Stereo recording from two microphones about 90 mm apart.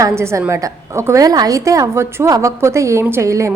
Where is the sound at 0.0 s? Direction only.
30° right (ahead or behind).